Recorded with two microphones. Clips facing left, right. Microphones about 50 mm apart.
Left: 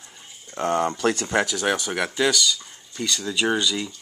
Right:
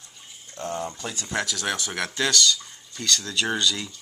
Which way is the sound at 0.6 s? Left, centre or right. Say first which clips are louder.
Left 8 dB; left.